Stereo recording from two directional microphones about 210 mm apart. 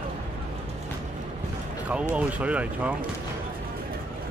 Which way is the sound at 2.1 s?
5° right (ahead or behind).